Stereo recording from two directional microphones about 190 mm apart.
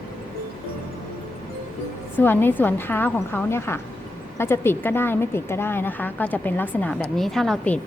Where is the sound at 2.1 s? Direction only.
10° left (ahead or behind).